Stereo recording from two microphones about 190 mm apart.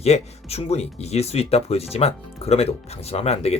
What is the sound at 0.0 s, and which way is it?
Speech, 35° left (ahead or behind).